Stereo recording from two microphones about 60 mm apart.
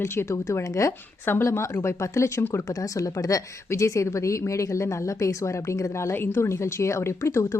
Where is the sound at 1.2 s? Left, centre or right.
Left.